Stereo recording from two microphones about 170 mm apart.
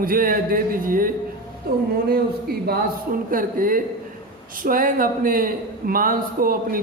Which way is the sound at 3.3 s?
55° right (ahead or behind).